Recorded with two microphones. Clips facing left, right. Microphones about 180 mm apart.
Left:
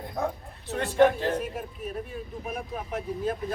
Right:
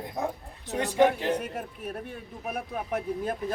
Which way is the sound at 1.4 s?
65° right (ahead or behind).